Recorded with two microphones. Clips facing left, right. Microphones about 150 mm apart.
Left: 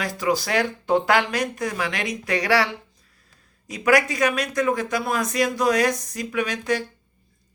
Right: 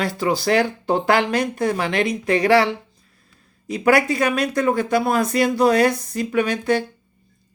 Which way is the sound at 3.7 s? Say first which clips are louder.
Right 3 dB; 30° right (ahead or behind).